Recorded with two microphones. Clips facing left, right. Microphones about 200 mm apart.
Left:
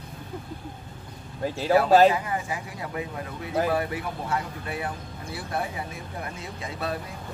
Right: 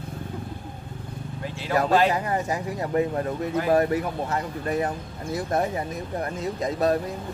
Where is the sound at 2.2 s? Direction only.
40° right (ahead or behind).